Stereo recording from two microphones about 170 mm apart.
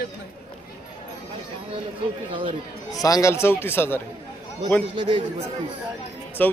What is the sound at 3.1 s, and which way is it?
Speech, 20° left (ahead or behind).